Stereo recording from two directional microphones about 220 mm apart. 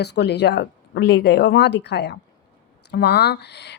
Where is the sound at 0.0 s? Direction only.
50° left (ahead or behind).